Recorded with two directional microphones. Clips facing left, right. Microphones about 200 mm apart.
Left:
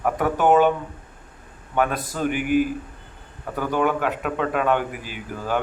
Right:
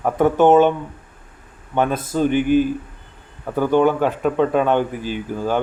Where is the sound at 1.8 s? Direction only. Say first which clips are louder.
Right 4 dB; 25° right (ahead or behind).